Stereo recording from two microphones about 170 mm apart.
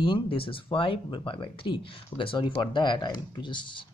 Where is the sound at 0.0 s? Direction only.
30° left (ahead or behind).